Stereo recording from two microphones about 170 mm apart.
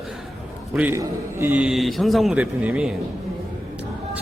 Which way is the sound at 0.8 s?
15° right (ahead or behind).